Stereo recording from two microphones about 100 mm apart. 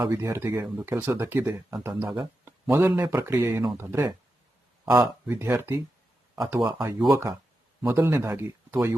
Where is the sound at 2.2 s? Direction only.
15° right (ahead or behind).